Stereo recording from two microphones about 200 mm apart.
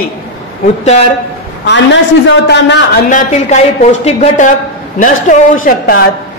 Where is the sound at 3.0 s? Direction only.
40° left (ahead or behind).